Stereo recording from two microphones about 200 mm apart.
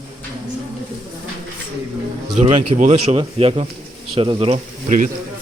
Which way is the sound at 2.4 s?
35° right (ahead or behind).